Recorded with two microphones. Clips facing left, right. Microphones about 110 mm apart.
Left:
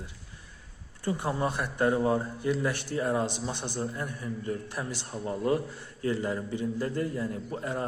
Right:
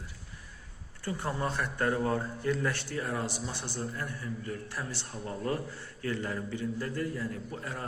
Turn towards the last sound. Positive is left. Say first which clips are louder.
# left 6 dB
turn(degrees=25)  # may be behind; listen again after turning